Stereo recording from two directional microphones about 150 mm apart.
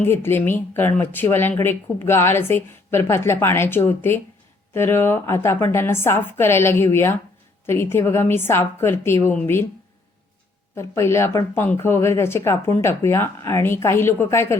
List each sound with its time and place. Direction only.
0.0 s speech: 15° left (ahead or behind)
10.8 s speech: 20° left (ahead or behind)